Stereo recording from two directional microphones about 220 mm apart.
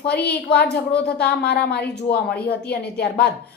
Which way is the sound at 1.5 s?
45° left (ahead or behind).